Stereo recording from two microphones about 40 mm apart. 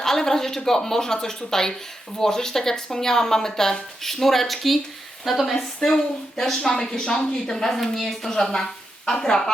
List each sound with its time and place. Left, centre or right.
0.0 s speech: centre